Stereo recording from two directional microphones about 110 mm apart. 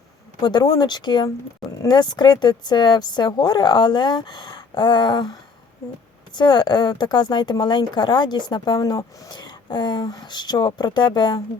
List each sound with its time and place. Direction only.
0.4 s speech: 40° left (ahead or behind)